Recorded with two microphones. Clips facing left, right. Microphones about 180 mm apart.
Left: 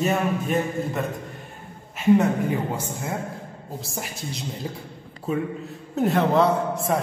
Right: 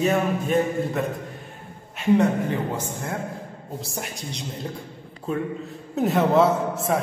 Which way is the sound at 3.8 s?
Centre (ahead or behind).